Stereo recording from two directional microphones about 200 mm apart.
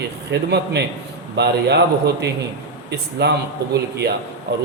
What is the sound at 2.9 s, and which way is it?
Speech, 55° right (ahead or behind).